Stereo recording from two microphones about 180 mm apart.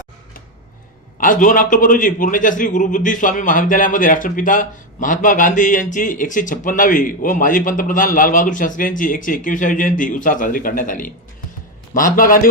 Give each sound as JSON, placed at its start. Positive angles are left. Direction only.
{"t": 1.2, "sound": "a man's voice", "side_deg": 50}